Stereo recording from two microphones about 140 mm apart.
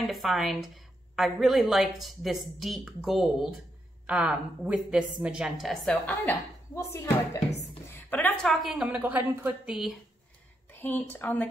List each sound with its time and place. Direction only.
0.0 s a woman's voice: centre (ahead or behind)
6.2 s a woman's voice: 20° left (ahead or behind); by 9.6 s 15° right (ahead or behind)
9.7 s a woman's voice: centre (ahead or behind)
10.7 s a woman's voice: 15° left (ahead or behind)